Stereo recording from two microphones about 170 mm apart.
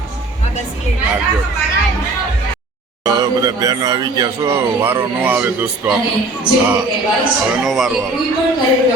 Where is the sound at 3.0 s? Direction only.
20° right (ahead or behind).